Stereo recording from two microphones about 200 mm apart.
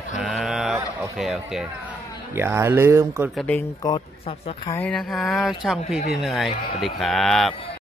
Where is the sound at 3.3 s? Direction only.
Centre (ahead or behind).